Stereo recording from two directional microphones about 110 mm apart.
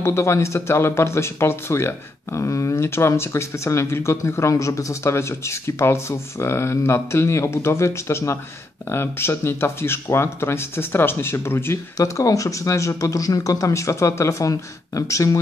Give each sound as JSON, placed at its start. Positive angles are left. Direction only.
{"t": 0.0, "sound": "speech", "side_deg": 25}